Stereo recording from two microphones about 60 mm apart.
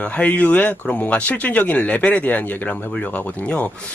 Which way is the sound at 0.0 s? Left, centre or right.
Left.